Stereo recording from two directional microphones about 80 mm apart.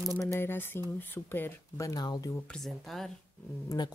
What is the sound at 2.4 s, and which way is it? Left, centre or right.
Speech, centre.